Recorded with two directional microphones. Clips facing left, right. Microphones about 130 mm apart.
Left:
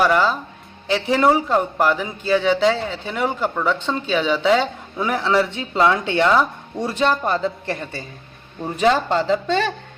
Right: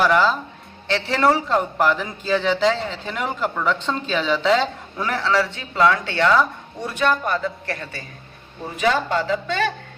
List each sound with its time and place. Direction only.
0.0 s a man's voice: 10° left (ahead or behind)
8.7 s speech: 35° left (ahead or behind)